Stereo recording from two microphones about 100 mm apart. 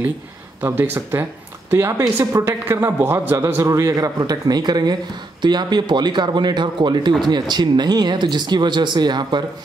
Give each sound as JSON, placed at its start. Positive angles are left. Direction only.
{"t": 0.6, "sound": "a man's voice", "side_deg": -20}